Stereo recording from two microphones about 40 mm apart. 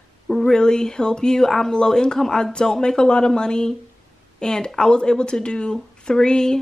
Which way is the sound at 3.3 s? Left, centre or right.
Centre.